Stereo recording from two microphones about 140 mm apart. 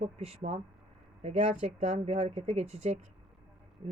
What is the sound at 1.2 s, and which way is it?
A woman's voice, 55° right (ahead or behind).